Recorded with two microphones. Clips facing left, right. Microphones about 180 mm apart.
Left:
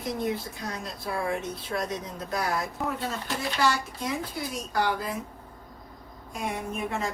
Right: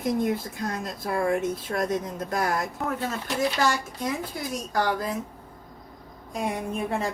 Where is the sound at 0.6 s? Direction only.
50° right (ahead or behind).